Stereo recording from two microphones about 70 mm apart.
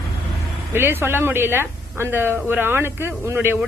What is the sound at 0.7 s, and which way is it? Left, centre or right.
A woman's voice, right.